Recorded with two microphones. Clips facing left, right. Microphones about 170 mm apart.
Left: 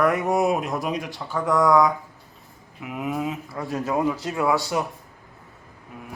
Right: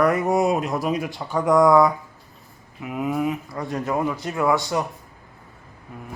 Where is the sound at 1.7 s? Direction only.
5° right (ahead or behind).